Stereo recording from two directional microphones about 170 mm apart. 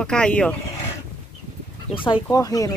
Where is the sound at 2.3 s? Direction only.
20° left (ahead or behind).